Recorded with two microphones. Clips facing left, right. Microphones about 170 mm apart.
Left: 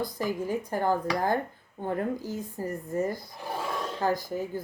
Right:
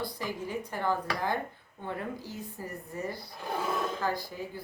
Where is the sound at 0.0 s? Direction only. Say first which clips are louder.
Left 5 dB; 45° left (ahead or behind).